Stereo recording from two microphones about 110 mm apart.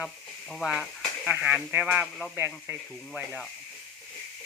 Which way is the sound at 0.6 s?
Centre (ahead or behind).